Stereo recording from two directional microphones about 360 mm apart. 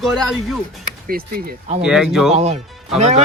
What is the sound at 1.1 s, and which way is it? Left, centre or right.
Speech, right.